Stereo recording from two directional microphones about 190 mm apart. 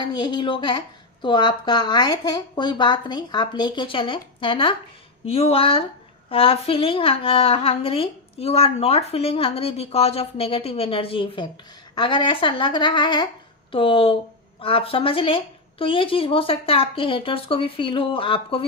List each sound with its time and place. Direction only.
0.0 s a woman's voice: 25° left (ahead or behind)